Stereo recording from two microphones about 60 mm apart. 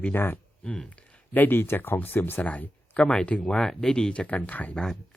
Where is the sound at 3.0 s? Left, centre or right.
Centre.